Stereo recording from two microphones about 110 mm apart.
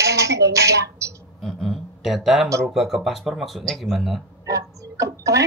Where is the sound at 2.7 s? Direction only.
Centre (ahead or behind).